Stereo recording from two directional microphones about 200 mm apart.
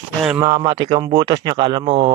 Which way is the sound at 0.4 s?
20° right (ahead or behind).